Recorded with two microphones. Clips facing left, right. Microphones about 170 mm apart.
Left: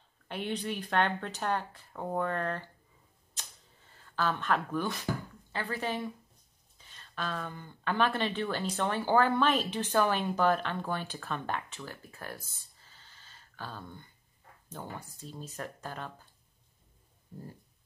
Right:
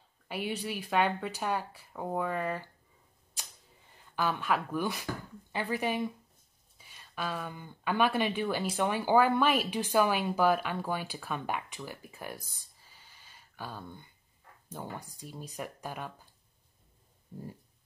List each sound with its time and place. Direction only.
0.3 s speech: 5° right (ahead or behind)
3.9 s speech: 15° right (ahead or behind)
17.3 s speech: 15° right (ahead or behind)